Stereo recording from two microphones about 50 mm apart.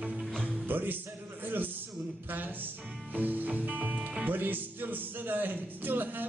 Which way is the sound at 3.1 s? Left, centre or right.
Right.